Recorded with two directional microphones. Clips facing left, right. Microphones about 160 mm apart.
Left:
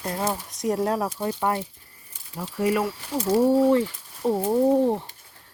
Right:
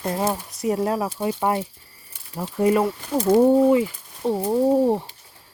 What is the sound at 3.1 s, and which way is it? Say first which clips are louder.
Speech: right 6 dB; 50° right (ahead or behind).